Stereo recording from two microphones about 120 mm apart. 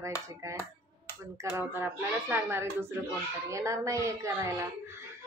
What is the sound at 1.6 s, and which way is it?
Speech, 15° right (ahead or behind).